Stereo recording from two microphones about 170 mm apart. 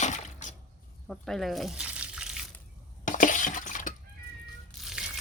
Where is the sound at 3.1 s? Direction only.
50° left (ahead or behind).